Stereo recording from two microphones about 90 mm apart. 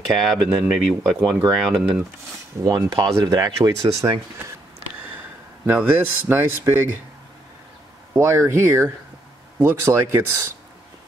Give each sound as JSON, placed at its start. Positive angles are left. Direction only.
{"t": 0.0, "sound": "speech", "side_deg": 0}
{"t": 2.6, "sound": "speech", "side_deg": -40}
{"t": 5.7, "sound": "speech", "side_deg": -20}
{"t": 8.2, "sound": "speech", "side_deg": -25}